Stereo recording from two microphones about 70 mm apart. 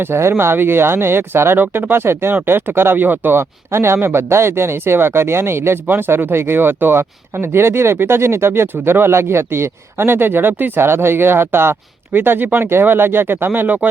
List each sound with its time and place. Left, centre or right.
0.0 s speech: right